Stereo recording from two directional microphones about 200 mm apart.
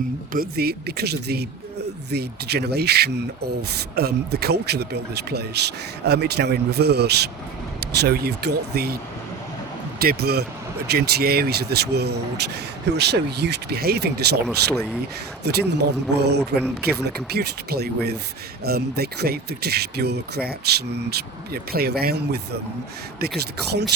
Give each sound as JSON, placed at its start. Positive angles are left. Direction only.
{"t": 0.3, "sound": "speech", "side_deg": -50}
{"t": 10.0, "sound": "speech", "side_deg": -50}
{"t": 14.4, "sound": "speech", "side_deg": 0}
{"t": 15.4, "sound": "speech", "side_deg": -55}